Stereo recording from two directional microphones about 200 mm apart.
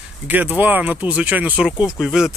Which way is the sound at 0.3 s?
10° right (ahead or behind).